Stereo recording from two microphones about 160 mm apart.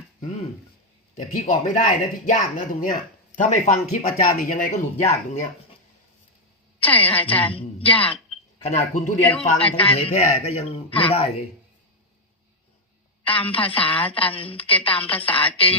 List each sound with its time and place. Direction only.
1.1 s speech: 50° left (ahead or behind)
6.8 s a woman's voice: 10° left (ahead or behind)
7.5 s a sound: 35° left (ahead or behind)
8.7 s speech: 50° left (ahead or behind)
9.4 s a man's voice: 35° left (ahead or behind)
13.2 s a man's voice: 35° left (ahead or behind)